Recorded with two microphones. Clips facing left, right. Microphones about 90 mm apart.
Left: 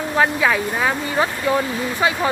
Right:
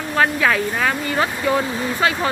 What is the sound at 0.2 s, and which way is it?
Speech, 10° left (ahead or behind).